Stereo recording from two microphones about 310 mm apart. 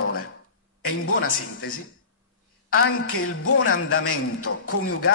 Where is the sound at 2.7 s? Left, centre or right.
Left.